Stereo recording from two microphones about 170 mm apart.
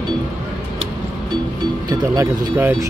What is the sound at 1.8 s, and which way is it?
Speech, 15° right (ahead or behind).